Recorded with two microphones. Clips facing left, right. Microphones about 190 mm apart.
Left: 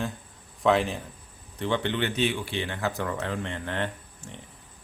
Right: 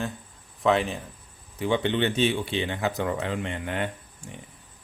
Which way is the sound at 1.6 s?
15° right (ahead or behind).